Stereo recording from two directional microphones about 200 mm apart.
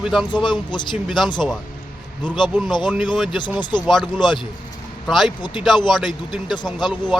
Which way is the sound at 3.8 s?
Centre (ahead or behind).